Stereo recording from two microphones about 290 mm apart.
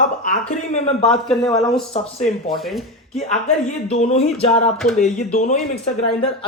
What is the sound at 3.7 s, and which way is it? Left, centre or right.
Speech, left.